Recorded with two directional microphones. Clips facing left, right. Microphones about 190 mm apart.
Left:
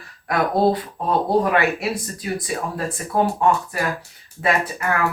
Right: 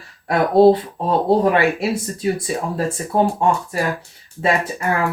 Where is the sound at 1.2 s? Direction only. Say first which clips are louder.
Right 4 dB; 30° right (ahead or behind).